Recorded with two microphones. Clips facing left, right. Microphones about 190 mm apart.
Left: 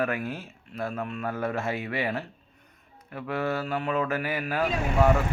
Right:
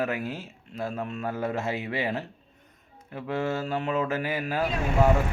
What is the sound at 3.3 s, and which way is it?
Speech, 25° right (ahead or behind).